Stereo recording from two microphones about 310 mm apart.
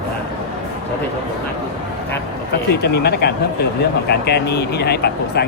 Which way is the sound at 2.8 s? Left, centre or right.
Left.